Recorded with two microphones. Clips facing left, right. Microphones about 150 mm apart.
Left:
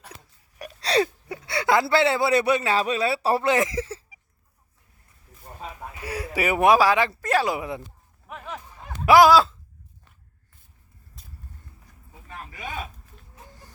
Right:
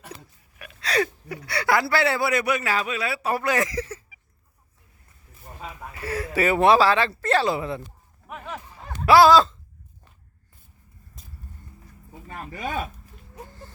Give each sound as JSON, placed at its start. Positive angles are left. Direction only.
{"t": 0.6, "sound": "a sound", "side_deg": 35}
{"t": 5.9, "sound": "speech", "side_deg": 15}
{"t": 9.0, "sound": "speech", "side_deg": 15}
{"t": 12.3, "sound": "speech", "side_deg": -45}